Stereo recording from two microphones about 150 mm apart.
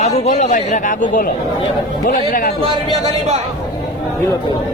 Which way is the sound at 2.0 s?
80° left.